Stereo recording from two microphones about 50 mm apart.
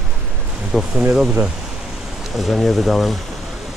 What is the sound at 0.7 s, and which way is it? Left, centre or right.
Speech, centre.